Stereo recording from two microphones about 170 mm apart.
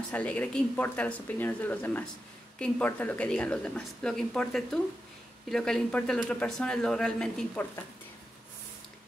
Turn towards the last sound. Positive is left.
turn(degrees=5)  # may be behind; listen again after turning